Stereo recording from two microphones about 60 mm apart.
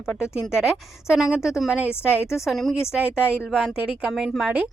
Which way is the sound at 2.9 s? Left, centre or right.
Centre.